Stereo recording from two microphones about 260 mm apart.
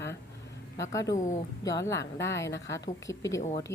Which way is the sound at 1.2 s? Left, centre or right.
Left.